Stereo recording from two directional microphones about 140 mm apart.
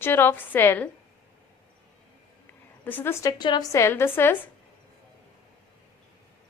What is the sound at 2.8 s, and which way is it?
Speech, 15° left (ahead or behind).